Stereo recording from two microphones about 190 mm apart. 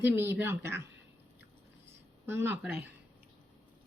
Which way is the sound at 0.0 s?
10° right (ahead or behind).